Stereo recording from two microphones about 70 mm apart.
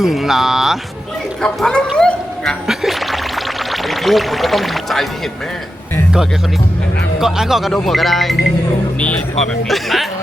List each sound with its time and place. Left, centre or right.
0.0 s speech: centre
1.4 s speech: centre
2.6 s pour: centre
7.2 s speech: centre
9.0 s speech: centre
9.6 s speech: centre